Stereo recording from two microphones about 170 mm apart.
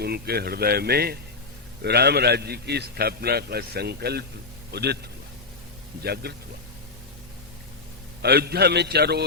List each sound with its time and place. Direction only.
0.0 s a man's voice: 70° right (ahead or behind)
6.0 s a man's voice: 70° right (ahead or behind)
8.2 s a man's voice: 70° right (ahead or behind)